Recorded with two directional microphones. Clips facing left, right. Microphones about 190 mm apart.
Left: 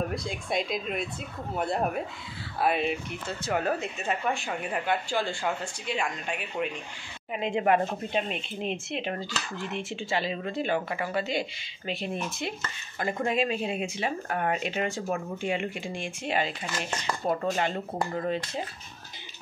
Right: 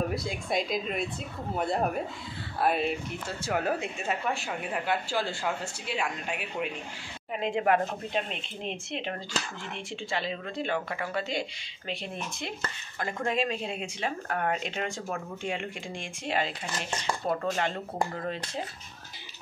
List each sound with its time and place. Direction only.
0.1 s speech: centre (ahead or behind)